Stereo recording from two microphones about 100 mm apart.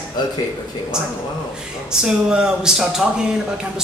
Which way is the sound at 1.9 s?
5° right (ahead or behind).